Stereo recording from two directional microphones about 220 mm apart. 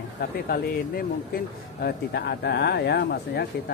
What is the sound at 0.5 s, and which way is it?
Speech, 40° left (ahead or behind).